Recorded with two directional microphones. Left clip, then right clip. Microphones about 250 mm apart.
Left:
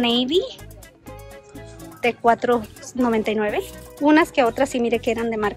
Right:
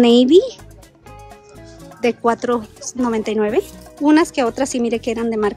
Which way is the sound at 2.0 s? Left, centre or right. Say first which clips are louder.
Right 1 dB; centre.